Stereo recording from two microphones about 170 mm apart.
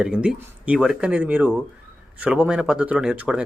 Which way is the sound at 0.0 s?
5° right (ahead or behind).